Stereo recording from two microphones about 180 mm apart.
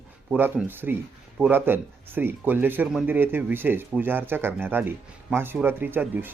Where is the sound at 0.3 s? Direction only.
10° right (ahead or behind).